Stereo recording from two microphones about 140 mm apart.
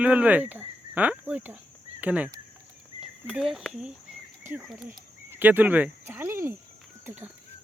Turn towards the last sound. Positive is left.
turn(degrees=-15)  # may be behind; listen again after turning